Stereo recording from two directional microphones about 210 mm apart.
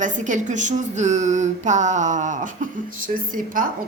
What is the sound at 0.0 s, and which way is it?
A woman's voice, 35° right (ahead or behind).